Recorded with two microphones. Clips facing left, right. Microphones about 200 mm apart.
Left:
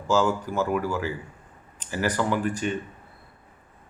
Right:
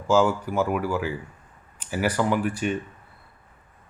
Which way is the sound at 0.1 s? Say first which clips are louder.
Right 2 dB; 10° right (ahead or behind).